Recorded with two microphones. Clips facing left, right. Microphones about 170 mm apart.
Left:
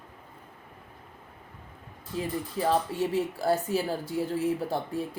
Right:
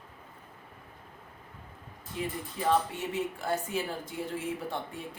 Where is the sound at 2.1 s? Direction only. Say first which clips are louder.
Left 4 dB; 35° left (ahead or behind).